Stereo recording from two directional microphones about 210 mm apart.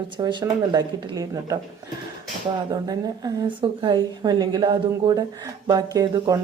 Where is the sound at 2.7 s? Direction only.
20° right (ahead or behind).